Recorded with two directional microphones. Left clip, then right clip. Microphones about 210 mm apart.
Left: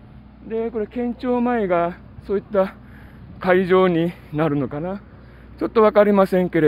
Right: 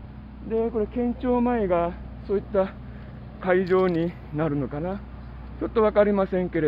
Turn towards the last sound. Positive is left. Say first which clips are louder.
# left 7 dB
turn(degrees=55)  # may be behind; listen again after turning